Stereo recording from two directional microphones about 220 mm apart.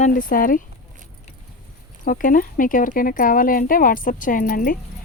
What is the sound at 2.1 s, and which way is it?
Speech, 40° left (ahead or behind).